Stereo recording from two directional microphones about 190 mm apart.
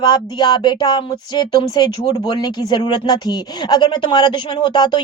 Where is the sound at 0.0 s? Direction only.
25° left (ahead or behind).